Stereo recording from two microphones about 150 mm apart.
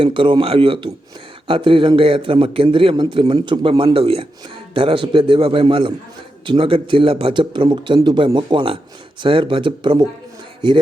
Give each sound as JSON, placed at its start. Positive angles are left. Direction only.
{"t": 0.0, "sound": "a man's voice", "side_deg": -35}